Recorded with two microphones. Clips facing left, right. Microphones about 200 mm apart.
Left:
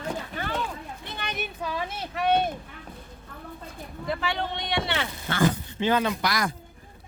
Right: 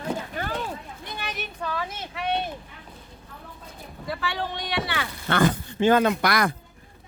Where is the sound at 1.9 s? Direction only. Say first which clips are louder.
Left 4 dB; 45° left (ahead or behind).